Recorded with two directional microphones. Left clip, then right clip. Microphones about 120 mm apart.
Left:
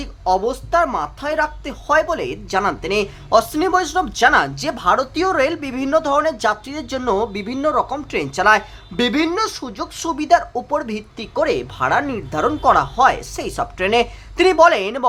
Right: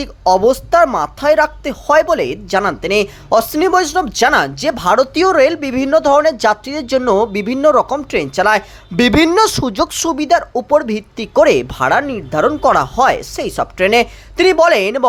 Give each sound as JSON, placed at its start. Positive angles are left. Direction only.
{"t": 0.0, "sound": "speech", "side_deg": -45}
{"t": 7.9, "sound": "speech", "side_deg": -25}
{"t": 9.0, "sound": "speech", "side_deg": -55}
{"t": 10.2, "sound": "speech", "side_deg": -30}
{"t": 11.3, "sound": "speech", "side_deg": -50}
{"t": 11.8, "sound": "speech", "side_deg": -25}